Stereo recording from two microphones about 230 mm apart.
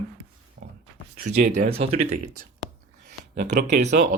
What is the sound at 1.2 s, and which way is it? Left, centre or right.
Speech, right.